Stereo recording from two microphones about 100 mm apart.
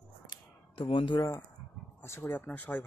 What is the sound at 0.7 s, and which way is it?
Speech, 60° left (ahead or behind).